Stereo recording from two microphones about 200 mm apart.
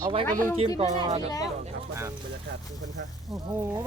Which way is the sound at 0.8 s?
25° right (ahead or behind).